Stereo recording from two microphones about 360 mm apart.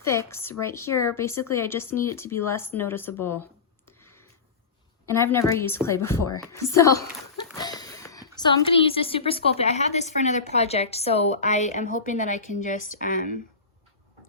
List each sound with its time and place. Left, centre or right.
0.0 s speech: centre
4.0 s a sound: centre
5.0 s a woman's voice: centre; by 13.4 s left